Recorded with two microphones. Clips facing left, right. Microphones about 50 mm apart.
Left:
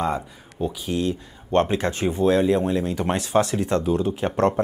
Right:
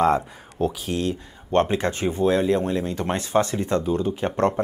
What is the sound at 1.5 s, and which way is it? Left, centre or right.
Speech, right.